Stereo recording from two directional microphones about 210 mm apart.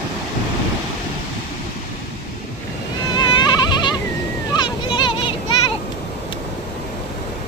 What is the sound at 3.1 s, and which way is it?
Insect, 20° left (ahead or behind).